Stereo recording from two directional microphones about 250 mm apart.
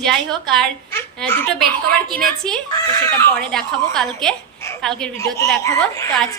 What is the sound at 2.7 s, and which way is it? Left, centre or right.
Speech, centre.